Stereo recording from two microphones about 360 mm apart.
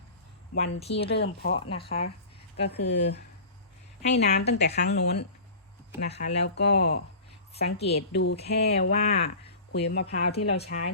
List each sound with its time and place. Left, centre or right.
0.5 s speech: left
1.8 s a woman's voice: centre
2.6 s speech: left
7.5 s a woman's voice: centre
8.1 s speech: left